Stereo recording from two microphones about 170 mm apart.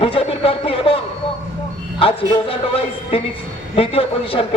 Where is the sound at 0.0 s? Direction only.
35° left (ahead or behind).